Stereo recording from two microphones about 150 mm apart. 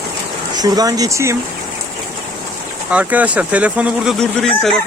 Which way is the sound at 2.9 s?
10° right (ahead or behind).